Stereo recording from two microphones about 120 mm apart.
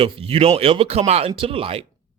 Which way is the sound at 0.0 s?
50° right (ahead or behind).